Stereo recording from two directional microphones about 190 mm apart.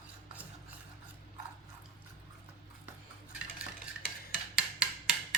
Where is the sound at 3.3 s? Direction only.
5° right (ahead or behind).